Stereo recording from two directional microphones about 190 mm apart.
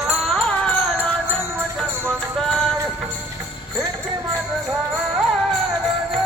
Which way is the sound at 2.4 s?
Centre (ahead or behind).